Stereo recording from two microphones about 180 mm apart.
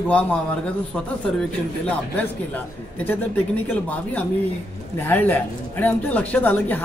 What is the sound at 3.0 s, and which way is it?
Speech, 10° left (ahead or behind).